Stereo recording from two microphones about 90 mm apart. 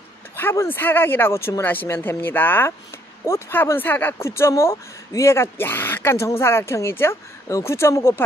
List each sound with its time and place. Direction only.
0.4 s speech: 25° left (ahead or behind)
4.3 s speech: 30° left (ahead or behind)